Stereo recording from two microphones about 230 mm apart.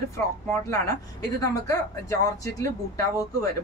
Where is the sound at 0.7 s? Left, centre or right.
Centre.